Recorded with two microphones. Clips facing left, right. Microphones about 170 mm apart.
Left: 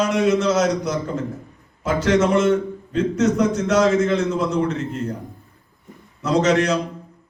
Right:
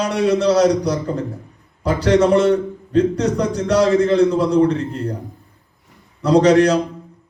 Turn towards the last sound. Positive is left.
turn(degrees=-35)  # may be behind; listen again after turning